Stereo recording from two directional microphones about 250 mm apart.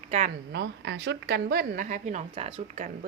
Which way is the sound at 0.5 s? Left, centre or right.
Right.